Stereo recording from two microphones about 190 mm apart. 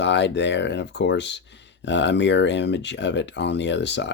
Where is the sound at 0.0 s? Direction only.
70° left (ahead or behind).